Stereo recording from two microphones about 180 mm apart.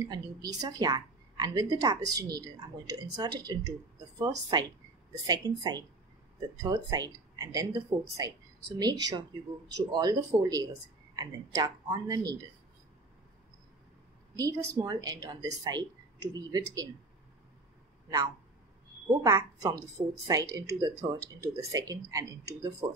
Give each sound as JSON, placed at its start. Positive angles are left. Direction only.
{"t": 0.1, "sound": "a woman's voice", "side_deg": -20}
{"t": 14.3, "sound": "a woman's voice", "side_deg": -15}
{"t": 19.0, "sound": "a woman's voice", "side_deg": -20}